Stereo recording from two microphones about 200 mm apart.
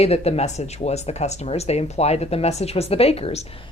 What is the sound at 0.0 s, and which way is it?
A woman's voice, 30° left (ahead or behind).